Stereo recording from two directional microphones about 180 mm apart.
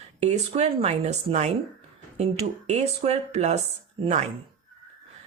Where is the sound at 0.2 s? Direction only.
35° right (ahead or behind).